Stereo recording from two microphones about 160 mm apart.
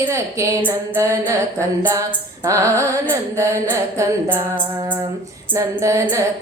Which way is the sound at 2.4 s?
20° right (ahead or behind).